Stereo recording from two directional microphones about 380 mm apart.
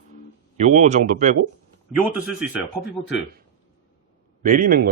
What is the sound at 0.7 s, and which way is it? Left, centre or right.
Speech, centre.